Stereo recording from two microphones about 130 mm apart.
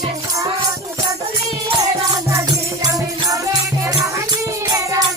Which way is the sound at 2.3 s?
25° right (ahead or behind).